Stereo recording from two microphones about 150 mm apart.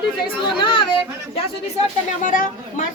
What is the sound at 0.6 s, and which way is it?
Speech, 35° left (ahead or behind).